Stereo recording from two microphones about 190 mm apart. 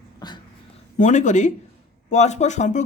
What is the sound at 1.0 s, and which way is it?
Speech, 40° left (ahead or behind).